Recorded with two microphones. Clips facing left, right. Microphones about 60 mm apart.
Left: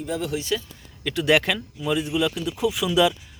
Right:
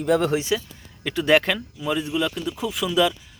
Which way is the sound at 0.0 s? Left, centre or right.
Right.